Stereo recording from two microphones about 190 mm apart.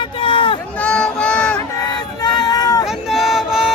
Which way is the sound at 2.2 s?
20° left (ahead or behind).